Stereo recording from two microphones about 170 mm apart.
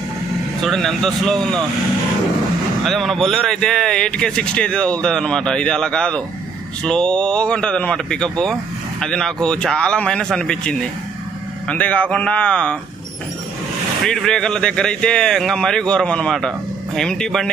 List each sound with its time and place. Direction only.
0.6 s speech: centre (ahead or behind)
2.8 s speech: centre (ahead or behind)
14.0 s speech: centre (ahead or behind)